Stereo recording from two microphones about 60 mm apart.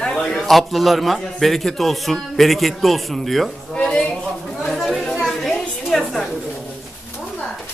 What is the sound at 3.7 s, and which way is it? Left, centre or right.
Speech, centre.